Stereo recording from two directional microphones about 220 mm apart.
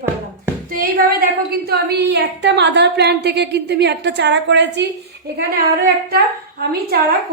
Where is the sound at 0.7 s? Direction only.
40° right (ahead or behind).